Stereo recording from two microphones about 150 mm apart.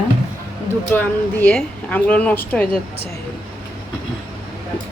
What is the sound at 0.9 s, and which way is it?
A woman's voice, 10° left (ahead or behind).